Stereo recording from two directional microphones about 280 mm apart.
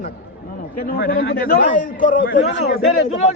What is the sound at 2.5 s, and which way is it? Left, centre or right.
Speech, left.